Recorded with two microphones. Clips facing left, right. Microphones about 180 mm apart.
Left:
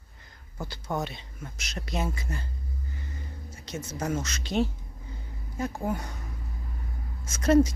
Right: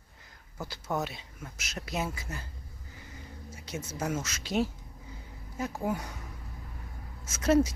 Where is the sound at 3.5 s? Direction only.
10° right (ahead or behind).